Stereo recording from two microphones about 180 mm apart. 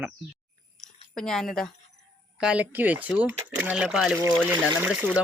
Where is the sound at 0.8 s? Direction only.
5° left (ahead or behind).